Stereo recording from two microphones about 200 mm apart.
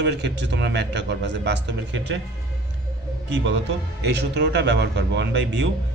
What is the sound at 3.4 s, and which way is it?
Speech, 60° right (ahead or behind).